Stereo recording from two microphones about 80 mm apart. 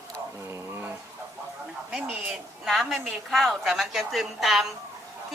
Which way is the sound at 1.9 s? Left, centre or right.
Centre.